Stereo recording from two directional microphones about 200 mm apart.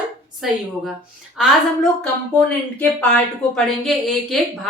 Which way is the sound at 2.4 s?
5° left (ahead or behind).